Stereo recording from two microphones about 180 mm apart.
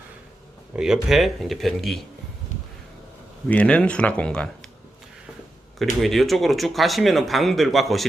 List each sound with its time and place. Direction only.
0.8 s speech: 5° right (ahead or behind)
3.5 s speech: 5° left (ahead or behind)
5.8 s speech: centre (ahead or behind)